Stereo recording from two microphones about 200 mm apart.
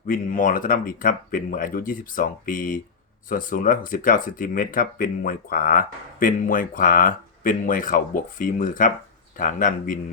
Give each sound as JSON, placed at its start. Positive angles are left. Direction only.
{"t": 0.1, "sound": "speech", "side_deg": 40}